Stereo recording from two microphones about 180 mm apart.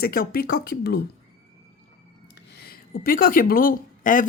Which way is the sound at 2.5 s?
60° left (ahead or behind).